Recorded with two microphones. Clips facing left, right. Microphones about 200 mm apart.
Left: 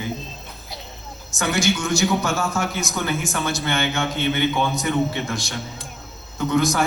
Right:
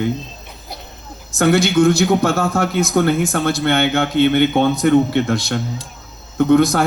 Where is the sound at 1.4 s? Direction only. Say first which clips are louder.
Right 9 dB; 60° right (ahead or behind).